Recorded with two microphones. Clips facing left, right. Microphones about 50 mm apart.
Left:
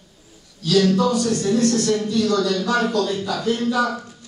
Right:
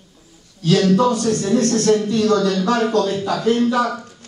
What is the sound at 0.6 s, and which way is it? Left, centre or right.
Speech, right.